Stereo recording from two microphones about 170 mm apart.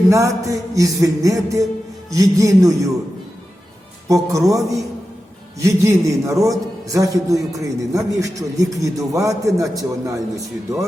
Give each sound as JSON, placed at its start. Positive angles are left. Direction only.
{"t": 0.1, "sound": "a man's voice", "side_deg": -20}
{"t": 4.1, "sound": "a man's voice", "side_deg": -20}